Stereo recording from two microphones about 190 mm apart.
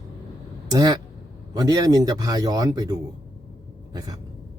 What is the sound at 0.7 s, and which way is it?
A man's voice, 20° right (ahead or behind).